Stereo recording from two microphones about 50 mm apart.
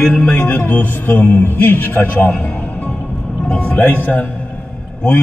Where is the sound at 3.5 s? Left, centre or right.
Left.